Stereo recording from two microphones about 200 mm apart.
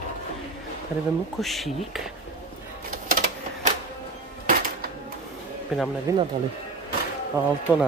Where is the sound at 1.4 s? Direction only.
Centre (ahead or behind).